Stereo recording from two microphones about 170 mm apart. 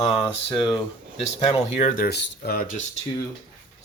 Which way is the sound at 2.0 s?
70° left (ahead or behind).